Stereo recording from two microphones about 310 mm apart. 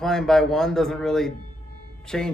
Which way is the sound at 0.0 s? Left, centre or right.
Centre.